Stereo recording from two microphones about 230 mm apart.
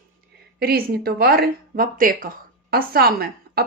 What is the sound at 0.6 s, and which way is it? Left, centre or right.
Speech, right.